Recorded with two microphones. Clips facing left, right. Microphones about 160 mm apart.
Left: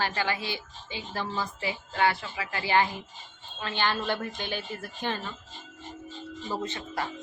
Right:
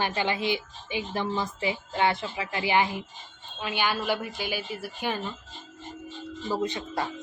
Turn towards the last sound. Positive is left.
turn(degrees=-15)  # may be behind; listen again after turning